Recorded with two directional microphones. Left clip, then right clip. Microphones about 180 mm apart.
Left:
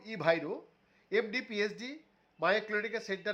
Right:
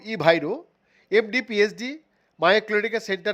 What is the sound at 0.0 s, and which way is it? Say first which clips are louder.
Speech: right 11 dB; 40° right (ahead or behind).